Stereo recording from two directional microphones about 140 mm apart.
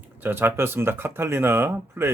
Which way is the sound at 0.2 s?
15° right (ahead or behind).